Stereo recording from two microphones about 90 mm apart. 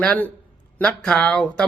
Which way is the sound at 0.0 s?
15° left (ahead or behind).